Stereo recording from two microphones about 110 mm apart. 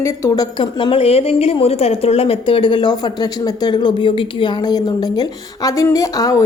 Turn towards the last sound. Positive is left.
turn(degrees=30)  # may be behind; listen again after turning